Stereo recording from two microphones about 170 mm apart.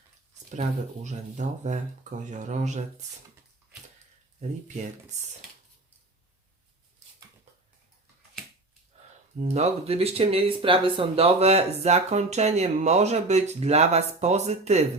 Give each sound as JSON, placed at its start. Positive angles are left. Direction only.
{"t": 1.0, "sound": "speech", "side_deg": -45}
{"t": 4.4, "sound": "speech", "side_deg": -40}
{"t": 9.4, "sound": "speech", "side_deg": -40}